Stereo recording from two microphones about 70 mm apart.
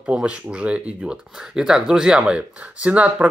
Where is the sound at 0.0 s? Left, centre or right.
Centre.